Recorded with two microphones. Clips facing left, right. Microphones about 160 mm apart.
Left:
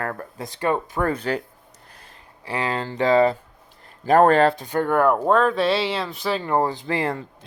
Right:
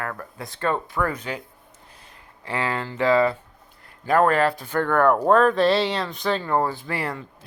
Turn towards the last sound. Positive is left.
turn(degrees=25)  # may be behind; listen again after turning